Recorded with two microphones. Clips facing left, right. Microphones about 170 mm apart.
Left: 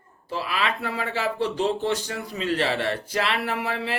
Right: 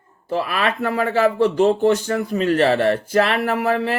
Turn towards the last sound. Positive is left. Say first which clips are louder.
# right 8 dB
turn(degrees=-45)  # may be behind; listen again after turning